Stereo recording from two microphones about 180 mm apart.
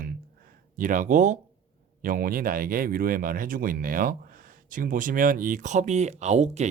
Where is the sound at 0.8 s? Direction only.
50° right (ahead or behind).